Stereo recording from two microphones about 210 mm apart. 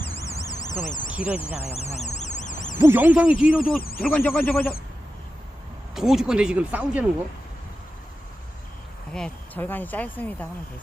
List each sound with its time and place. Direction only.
0.2 s alarm: 15° left (ahead or behind)
0.6 s speech: 20° left (ahead or behind)
1.1 s speech: 5° right (ahead or behind)
1.5 s a sound: 30° left (ahead or behind)
2.7 s speech: 10° right (ahead or behind)
3.8 s speech: 45° left (ahead or behind)
4.0 s speech: centre (ahead or behind)
5.9 s speech: centre (ahead or behind)
9.1 s speech: 5° left (ahead or behind)